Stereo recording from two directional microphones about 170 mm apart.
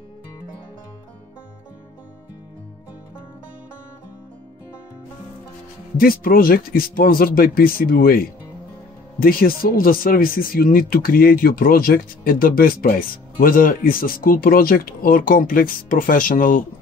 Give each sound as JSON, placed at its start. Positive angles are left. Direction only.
{"t": 5.9, "sound": "speech", "side_deg": 60}